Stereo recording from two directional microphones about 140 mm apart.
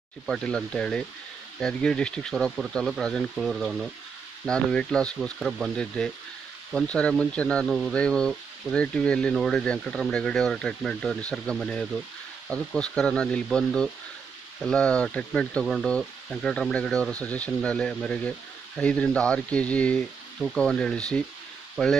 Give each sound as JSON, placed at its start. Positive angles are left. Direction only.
{"t": 0.3, "sound": "speech", "side_deg": 5}